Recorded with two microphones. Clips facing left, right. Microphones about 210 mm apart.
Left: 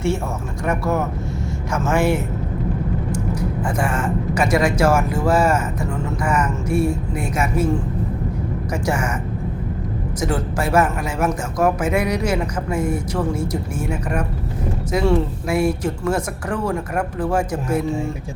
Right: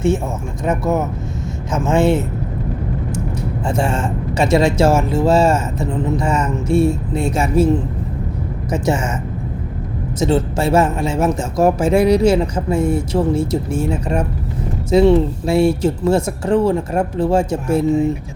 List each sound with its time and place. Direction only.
0.6 s speech: 20° right (ahead or behind)
3.6 s speech: 25° right (ahead or behind)
10.2 s speech: 25° right (ahead or behind)